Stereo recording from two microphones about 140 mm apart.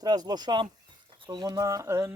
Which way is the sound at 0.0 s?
30° right (ahead or behind).